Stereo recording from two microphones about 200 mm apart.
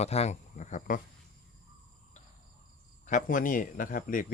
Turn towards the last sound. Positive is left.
turn(degrees=45)  # may be behind; listen again after turning